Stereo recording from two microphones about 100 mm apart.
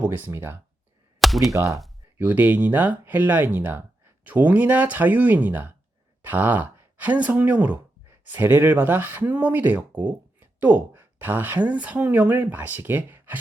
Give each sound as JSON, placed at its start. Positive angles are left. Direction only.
{"t": 0.0, "sound": "speech", "side_deg": -20}
{"t": 1.2, "sound": "chop", "side_deg": 0}
{"t": 1.5, "sound": "speech", "side_deg": -30}
{"t": 2.1, "sound": "speech", "side_deg": -20}